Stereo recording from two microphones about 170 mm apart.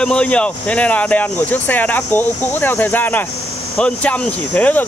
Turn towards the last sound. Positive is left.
turn(degrees=10)  # may be behind; listen again after turning